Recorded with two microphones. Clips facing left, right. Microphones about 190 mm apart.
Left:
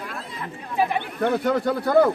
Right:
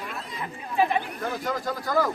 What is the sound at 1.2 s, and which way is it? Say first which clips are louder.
Speech: left 8 dB; 65° left (ahead or behind).